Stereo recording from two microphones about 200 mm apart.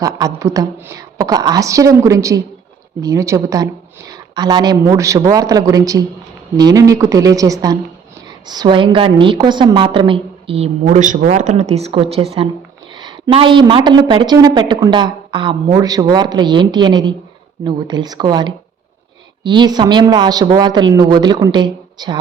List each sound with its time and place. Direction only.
0.0 s a woman's voice: 15° right (ahead or behind)